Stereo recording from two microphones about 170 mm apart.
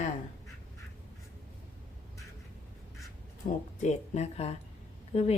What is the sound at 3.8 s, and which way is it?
Speech, 40° left (ahead or behind).